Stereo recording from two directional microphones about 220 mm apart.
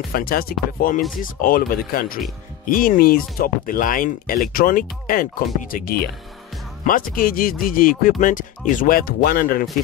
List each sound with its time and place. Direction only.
0.1 s speech: 40° left (ahead or behind)